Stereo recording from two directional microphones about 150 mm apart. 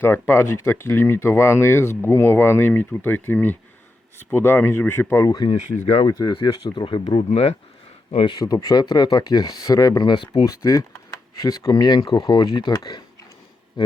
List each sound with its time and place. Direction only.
0.0 s speech: 15° left (ahead or behind)
5.5 s speech: 45° left (ahead or behind)
6.1 s speech: 25° left (ahead or behind)
7.3 s speech: 45° left (ahead or behind)
8.4 s speech: 25° left (ahead or behind)